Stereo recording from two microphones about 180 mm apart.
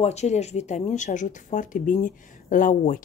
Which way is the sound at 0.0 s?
40° left (ahead or behind).